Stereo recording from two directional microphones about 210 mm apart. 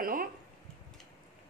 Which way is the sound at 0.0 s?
40° right (ahead or behind).